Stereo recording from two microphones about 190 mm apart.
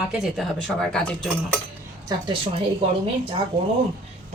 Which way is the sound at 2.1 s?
25° right (ahead or behind).